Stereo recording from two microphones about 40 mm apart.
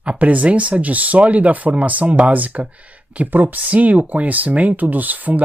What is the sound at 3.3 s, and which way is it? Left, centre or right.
Speech, right.